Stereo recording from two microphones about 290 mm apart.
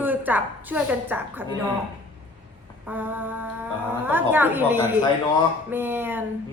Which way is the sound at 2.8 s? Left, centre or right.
Centre.